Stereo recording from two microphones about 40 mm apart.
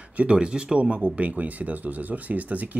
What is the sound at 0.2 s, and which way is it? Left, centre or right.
Speech, right.